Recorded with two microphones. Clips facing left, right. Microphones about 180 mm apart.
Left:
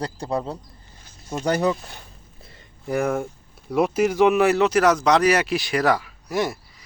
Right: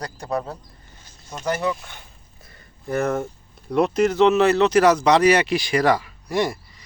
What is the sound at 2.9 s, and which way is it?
Speech, 10° left (ahead or behind).